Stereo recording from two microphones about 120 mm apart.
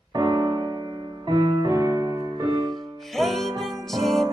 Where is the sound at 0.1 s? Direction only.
35° right (ahead or behind).